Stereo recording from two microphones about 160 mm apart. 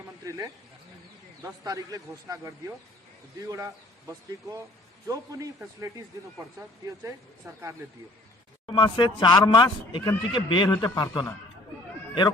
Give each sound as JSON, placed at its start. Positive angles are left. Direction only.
{"t": 0.3, "sound": "speech", "side_deg": -20}
{"t": 5.0, "sound": "speech", "side_deg": -20}
{"t": 6.6, "sound": "speech", "side_deg": -15}
{"t": 8.6, "sound": "speech", "side_deg": 30}